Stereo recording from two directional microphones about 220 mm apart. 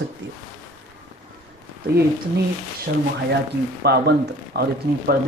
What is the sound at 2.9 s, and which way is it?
A woman's voice, 45° right (ahead or behind).